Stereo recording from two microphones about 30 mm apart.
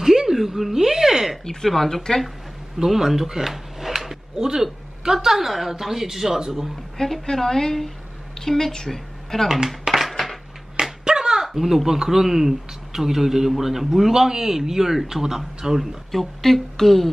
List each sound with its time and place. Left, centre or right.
0.0 s a sound: centre
1.4 s a woman's voice: centre
2.8 s speech: centre
4.4 s speech: right
7.0 s a woman's voice: centre
9.7 s a sound: centre
10.8 s a sound: right
11.4 s speech: centre
16.1 s speech: centre